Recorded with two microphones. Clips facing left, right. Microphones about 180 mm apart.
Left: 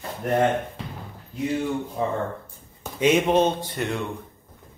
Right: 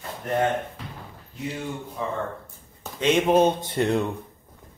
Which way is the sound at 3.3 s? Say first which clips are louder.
Right 1 dB; 10° right (ahead or behind).